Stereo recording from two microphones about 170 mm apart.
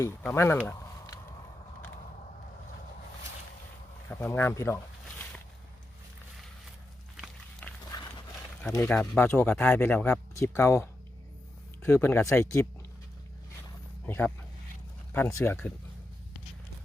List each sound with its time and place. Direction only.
0.3 s a sound: 10° left (ahead or behind)
4.1 s speech: 10° left (ahead or behind)
7.9 s dog: 25° left (ahead or behind)
8.7 s speech: 15° left (ahead or behind)
14.0 s speech: 10° left (ahead or behind)